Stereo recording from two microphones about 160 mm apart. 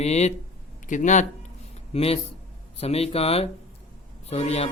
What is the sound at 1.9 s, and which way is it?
Speech, 40° left (ahead or behind).